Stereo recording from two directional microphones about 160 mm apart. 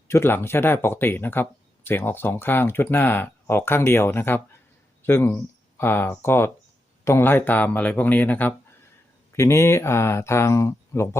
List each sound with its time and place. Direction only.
0.1 s speech: 15° left (ahead or behind)